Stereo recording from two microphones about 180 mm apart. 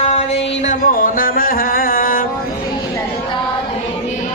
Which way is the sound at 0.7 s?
50° left (ahead or behind).